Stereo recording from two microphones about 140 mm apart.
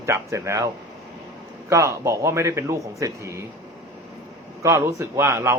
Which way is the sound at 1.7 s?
20° right (ahead or behind).